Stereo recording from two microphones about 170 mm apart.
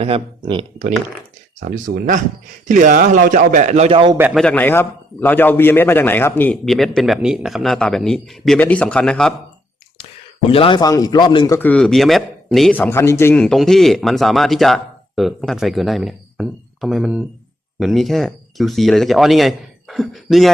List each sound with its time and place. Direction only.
0.0 s speech: 30° right (ahead or behind)
1.9 s speech: 90° right
2.6 s a man's voice: 50° right (ahead or behind); by 4.2 s 30° right (ahead or behind)
4.4 s a man's voice: 10° left (ahead or behind)
10.5 s speech: 30° left (ahead or behind)
11.5 s a man's voice: 10° left (ahead or behind)